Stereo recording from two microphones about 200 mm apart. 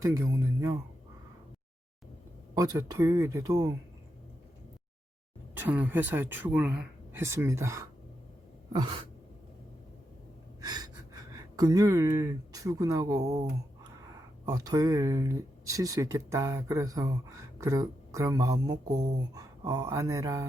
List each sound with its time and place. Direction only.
0.0 s speech: 15° right (ahead or behind)
2.6 s speech: 15° right (ahead or behind)
5.5 s speech: 10° right (ahead or behind)
8.7 s a sound: 25° right (ahead or behind)
10.6 s speech: 20° right (ahead or behind)
14.4 s speech: 15° right (ahead or behind)